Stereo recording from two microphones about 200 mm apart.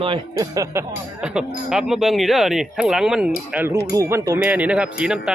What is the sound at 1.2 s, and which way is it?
Speech, 5° right (ahead or behind).